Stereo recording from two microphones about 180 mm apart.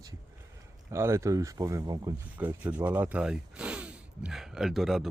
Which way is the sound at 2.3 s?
10° right (ahead or behind).